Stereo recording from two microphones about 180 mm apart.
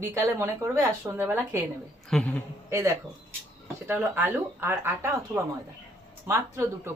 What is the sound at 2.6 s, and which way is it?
A woman's voice, 15° right (ahead or behind).